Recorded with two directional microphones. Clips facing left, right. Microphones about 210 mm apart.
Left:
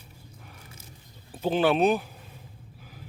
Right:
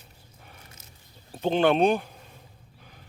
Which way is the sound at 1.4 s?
5° left (ahead or behind).